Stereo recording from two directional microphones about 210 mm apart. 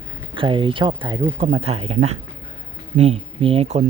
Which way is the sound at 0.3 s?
25° right (ahead or behind).